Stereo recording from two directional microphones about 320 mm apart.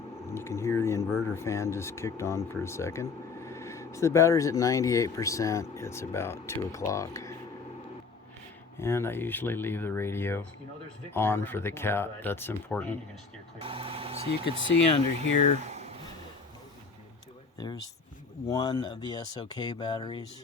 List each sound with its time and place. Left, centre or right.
0.2 s a sound: centre
1.2 s speech: centre
8.8 s speech: centre
13.6 s speech: centre
15.5 s a sound: right
17.6 s speech: centre